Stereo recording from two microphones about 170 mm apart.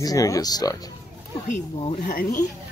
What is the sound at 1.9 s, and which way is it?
Speech, 50° left (ahead or behind).